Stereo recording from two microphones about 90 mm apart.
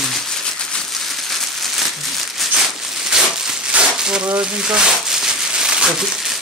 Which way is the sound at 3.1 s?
5° right (ahead or behind).